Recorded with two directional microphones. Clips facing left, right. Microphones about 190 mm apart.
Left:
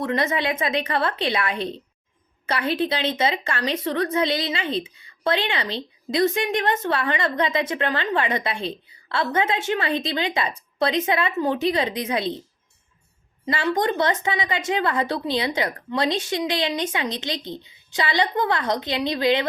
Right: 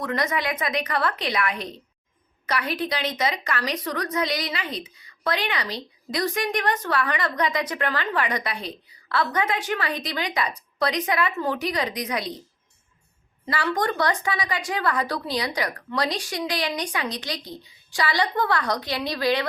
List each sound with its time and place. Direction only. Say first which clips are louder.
0.0 s a woman's voice: left 3 dB; 25° left (ahead or behind)
13.4 s a woman's voice: left 3 dB; 20° left (ahead or behind)